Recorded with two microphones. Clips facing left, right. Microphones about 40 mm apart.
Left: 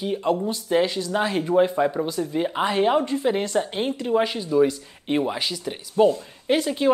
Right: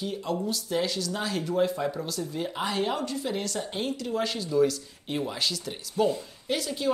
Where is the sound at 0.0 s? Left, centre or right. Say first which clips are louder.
Left 7 dB; left.